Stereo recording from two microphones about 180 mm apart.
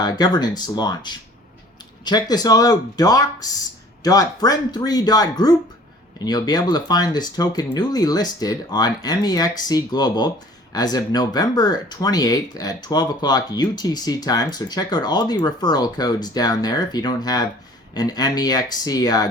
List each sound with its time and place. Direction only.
0.0 s speech: 20° left (ahead or behind)